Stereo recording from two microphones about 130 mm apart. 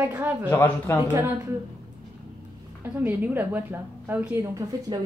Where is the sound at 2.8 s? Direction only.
15° right (ahead or behind).